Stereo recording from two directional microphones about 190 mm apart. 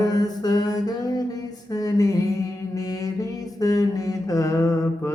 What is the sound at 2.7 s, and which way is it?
Mantra, 15° left (ahead or behind).